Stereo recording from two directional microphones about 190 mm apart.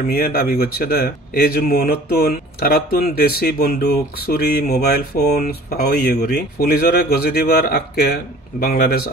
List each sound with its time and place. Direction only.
0.1 s speech: 50° left (ahead or behind)